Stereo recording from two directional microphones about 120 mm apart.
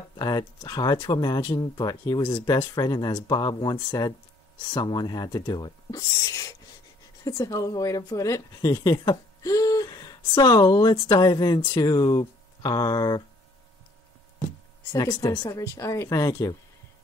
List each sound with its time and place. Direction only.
0.2 s a woman's voice: 35° left (ahead or behind)
14.9 s a woman's voice: 35° left (ahead or behind)